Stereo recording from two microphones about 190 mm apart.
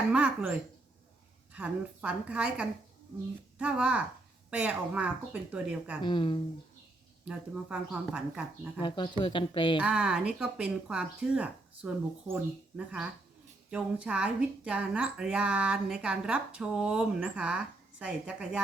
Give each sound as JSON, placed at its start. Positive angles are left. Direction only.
{"t": 0.1, "sound": "speech", "side_deg": -5}
{"t": 1.5, "sound": "speech", "side_deg": -5}
{"t": 6.0, "sound": "speech", "side_deg": 25}
{"t": 7.3, "sound": "speech", "side_deg": -5}
{"t": 8.8, "sound": "speech", "side_deg": 25}
{"t": 9.7, "sound": "speech", "side_deg": -5}